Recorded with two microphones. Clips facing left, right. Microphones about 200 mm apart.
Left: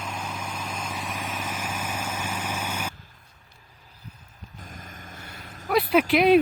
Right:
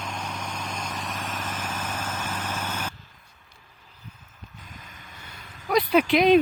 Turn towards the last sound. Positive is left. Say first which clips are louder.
# even
turn(degrees=5)  # may be behind; listen again after turning